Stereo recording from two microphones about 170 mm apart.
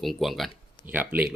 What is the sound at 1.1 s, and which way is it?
Speech, 10° right (ahead or behind).